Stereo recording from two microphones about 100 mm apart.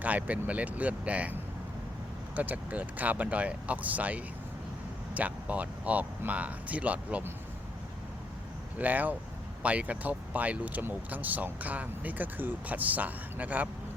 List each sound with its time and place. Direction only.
0.0 s speech: 15° right (ahead or behind)
8.8 s speech: 15° right (ahead or behind)